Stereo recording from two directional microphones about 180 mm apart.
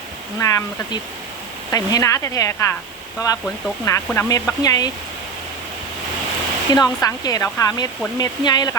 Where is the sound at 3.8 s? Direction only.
15° left (ahead or behind).